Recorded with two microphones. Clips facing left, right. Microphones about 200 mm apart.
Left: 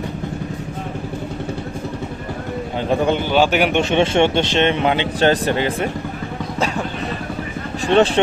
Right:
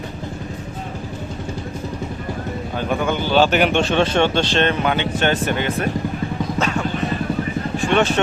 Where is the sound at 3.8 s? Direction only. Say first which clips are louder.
Left 2 dB; 20° left (ahead or behind).